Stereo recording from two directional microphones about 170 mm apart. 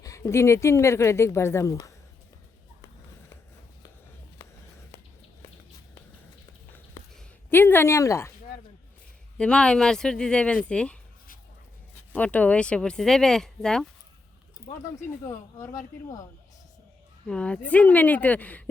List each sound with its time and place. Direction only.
0.0 s speech: 15° left (ahead or behind)
7.1 s a sound: 5° left (ahead or behind)
9.4 s speech: 5° left (ahead or behind)
12.1 s speech: 10° left (ahead or behind)
15.3 s speech: 15° left (ahead or behind)
17.2 s speech: 5° left (ahead or behind)